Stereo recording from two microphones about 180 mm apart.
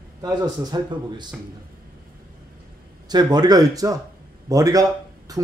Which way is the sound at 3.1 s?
25° right (ahead or behind).